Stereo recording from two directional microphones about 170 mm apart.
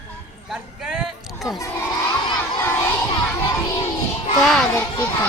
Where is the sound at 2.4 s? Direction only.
15° left (ahead or behind).